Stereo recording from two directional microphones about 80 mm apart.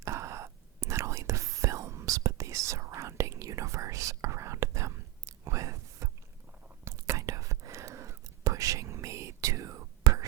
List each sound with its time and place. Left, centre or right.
0.0 s whispering: right